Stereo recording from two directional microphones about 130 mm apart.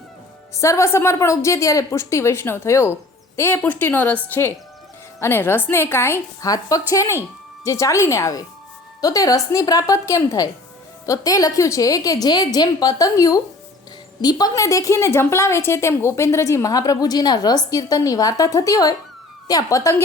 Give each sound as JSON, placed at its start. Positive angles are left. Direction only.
{"t": 0.5, "sound": "a woman's voice", "side_deg": 25}